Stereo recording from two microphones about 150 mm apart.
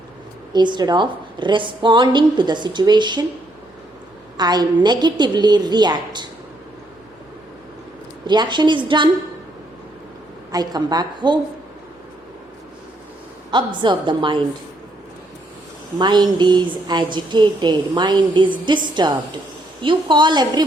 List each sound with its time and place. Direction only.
0.5 s a woman's voice: 30° right (ahead or behind)
4.4 s a woman's voice: 30° right (ahead or behind)
8.3 s a woman's voice: 30° right (ahead or behind)
10.5 s a woman's voice: 25° right (ahead or behind)
13.5 s a woman's voice: 30° right (ahead or behind)
16.0 s a woman's voice: 30° right (ahead or behind)